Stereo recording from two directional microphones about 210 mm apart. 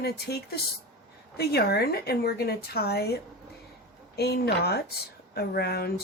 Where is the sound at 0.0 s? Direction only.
50° left (ahead or behind).